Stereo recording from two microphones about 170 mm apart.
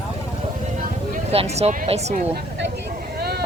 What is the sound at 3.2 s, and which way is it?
Vehicle, 70° right (ahead or behind).